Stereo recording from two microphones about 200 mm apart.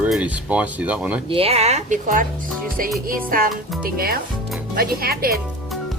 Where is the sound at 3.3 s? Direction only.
45° right (ahead or behind).